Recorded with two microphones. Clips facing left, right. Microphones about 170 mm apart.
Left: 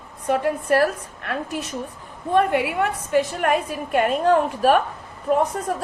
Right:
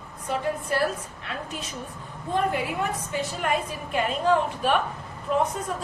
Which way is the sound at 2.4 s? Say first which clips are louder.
Left 6 dB; 70° left (ahead or behind).